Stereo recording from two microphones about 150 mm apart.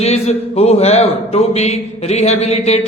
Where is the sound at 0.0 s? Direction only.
45° left (ahead or behind).